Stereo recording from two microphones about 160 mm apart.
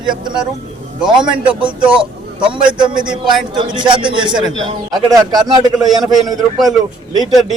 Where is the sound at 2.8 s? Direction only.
30° right (ahead or behind).